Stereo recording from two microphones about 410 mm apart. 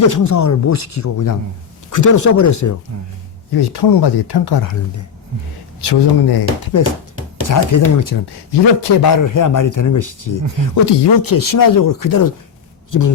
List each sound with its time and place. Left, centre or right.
0.1 s a man's voice: left
3.5 s speech: left
5.8 s speech: left
6.7 s a man's voice: left
10.8 s a man's voice: left